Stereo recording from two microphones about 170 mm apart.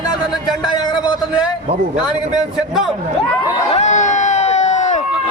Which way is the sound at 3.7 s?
40° left (ahead or behind).